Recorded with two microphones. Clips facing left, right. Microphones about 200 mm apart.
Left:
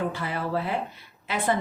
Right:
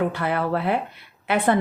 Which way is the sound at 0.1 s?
60° right (ahead or behind).